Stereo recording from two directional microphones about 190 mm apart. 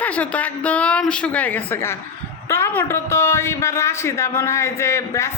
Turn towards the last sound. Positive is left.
turn(degrees=15)  # may be behind; listen again after turning